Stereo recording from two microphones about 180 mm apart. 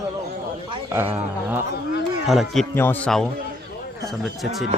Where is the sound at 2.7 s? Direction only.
10° left (ahead or behind).